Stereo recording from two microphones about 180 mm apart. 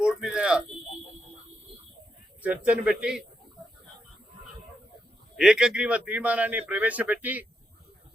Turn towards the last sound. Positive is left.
turn(degrees=-10)  # may be behind; listen again after turning